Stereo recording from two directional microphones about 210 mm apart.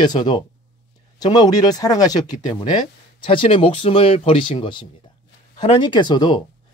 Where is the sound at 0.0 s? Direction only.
20° left (ahead or behind).